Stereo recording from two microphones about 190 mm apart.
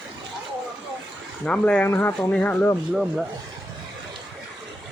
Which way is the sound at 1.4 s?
5° left (ahead or behind).